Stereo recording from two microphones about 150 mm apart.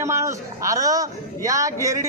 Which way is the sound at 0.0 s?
20° right (ahead or behind).